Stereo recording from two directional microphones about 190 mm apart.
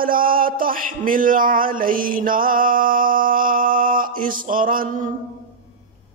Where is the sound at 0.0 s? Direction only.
50° right (ahead or behind).